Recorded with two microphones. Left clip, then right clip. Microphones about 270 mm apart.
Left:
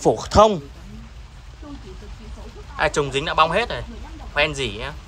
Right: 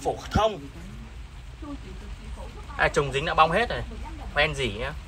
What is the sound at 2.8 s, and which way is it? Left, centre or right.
Speech, centre.